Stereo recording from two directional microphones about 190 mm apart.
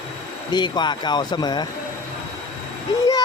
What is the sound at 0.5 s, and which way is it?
Speech, 25° left (ahead or behind).